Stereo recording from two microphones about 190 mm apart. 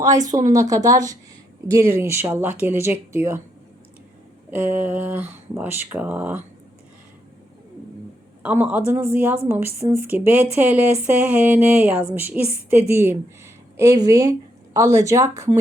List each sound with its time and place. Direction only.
0.0 s a woman's voice: 20° right (ahead or behind)
4.5 s a woman's voice: 10° right (ahead or behind)
8.4 s a woman's voice: 5° right (ahead or behind)